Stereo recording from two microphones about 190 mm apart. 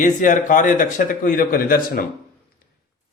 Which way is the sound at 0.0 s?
45° left (ahead or behind).